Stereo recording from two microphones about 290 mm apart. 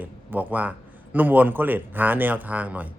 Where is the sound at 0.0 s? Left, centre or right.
Centre.